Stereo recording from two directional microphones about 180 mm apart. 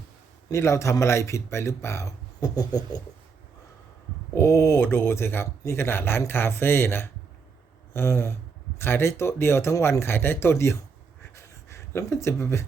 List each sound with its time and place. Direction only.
0.5 s speech: 15° left (ahead or behind)
4.4 s speech: 15° left (ahead or behind)
11.3 s a sound: 15° left (ahead or behind)